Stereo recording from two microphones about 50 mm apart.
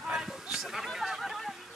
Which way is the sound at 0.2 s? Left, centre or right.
Centre.